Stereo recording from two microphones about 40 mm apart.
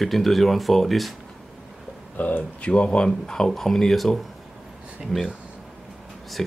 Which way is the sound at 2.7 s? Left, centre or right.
Left.